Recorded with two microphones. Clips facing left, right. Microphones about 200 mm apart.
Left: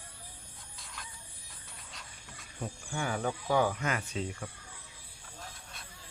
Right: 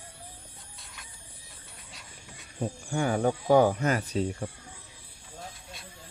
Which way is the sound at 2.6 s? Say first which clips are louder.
Right 7 dB; 40° right (ahead or behind).